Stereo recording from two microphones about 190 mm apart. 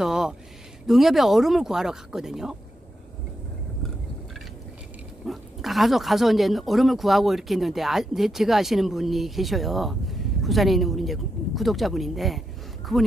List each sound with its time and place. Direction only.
0.0 s a sound: 5° right (ahead or behind)
0.8 s speech: centre (ahead or behind)
5.2 s speech: centre (ahead or behind)